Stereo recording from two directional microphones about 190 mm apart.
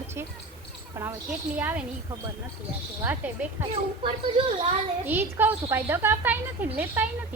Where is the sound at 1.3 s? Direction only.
5° right (ahead or behind).